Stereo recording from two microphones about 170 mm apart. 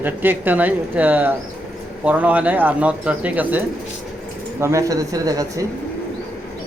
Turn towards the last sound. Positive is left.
turn(degrees=-20)  # may be behind; listen again after turning